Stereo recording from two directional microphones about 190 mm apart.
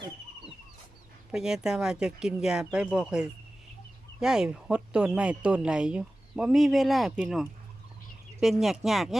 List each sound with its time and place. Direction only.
1.3 s speech: 5° right (ahead or behind)